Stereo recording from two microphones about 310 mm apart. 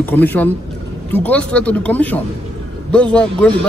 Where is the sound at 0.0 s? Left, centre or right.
Centre.